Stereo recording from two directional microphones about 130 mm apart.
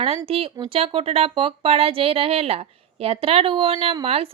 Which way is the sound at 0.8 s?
45° right (ahead or behind).